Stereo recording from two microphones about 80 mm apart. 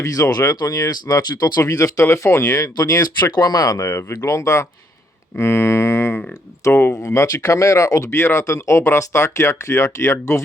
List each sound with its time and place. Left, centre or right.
0.0 s speech: left
3.8 s speech: left